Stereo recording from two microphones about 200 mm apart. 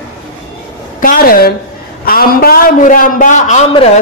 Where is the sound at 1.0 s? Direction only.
45° left (ahead or behind).